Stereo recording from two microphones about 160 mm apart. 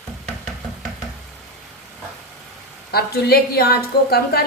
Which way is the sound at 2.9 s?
75° left (ahead or behind).